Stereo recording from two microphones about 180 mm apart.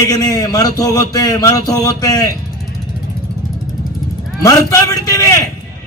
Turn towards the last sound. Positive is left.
turn(degrees=20)  # may be behind; listen again after turning